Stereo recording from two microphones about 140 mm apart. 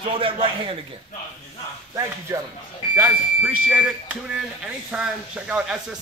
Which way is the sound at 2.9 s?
15° right (ahead or behind).